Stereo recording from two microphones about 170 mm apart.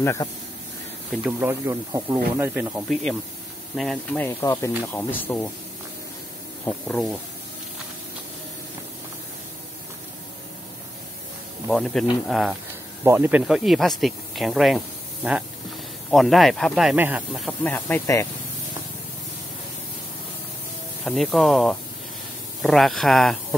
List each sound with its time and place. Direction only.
0.0 s speech: 15° left (ahead or behind)
1.4 s speech: 15° right (ahead or behind)
2.9 s speech: centre (ahead or behind)
6.6 s speech: 10° left (ahead or behind)
11.7 s speech: centre (ahead or behind)
13.0 s speech: 15° right (ahead or behind)
13.5 s speech: centre (ahead or behind)
16.1 s speech: centre (ahead or behind)
17.6 s speech: 10° left (ahead or behind)
21.0 s speech: centre (ahead or behind)